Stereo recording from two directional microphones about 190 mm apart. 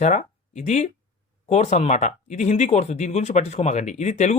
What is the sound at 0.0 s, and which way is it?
Speech, 40° left (ahead or behind).